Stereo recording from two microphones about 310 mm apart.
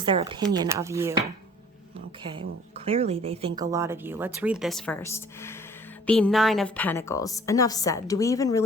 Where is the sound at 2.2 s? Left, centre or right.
Centre.